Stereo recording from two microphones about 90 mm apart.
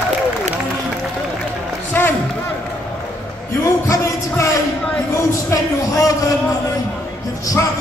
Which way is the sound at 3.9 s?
35° left (ahead or behind).